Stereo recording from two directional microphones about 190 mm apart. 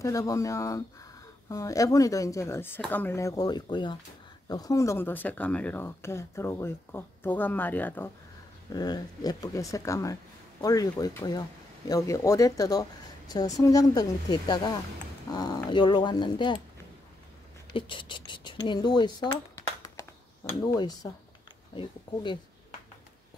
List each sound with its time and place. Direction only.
0.0 s speech: 15° left (ahead or behind)
8.7 s speech: 20° left (ahead or behind)
17.7 s speech: 25° left (ahead or behind)